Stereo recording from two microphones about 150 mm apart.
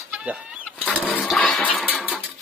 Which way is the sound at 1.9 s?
5° right (ahead or behind).